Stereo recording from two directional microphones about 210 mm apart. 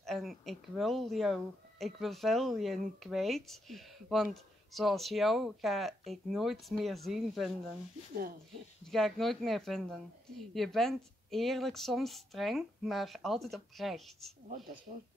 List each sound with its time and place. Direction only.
0.0 s speech: centre (ahead or behind)
8.9 s speech: centre (ahead or behind)